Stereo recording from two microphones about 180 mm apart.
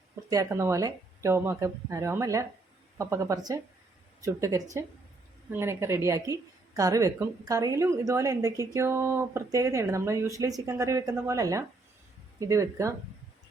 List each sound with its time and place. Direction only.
0.3 s a woman's voice: 20° right (ahead or behind)